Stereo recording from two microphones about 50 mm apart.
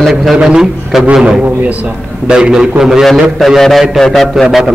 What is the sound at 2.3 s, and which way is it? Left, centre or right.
Speech, centre.